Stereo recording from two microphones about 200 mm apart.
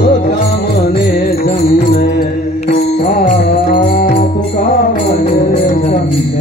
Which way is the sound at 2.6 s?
35° left (ahead or behind).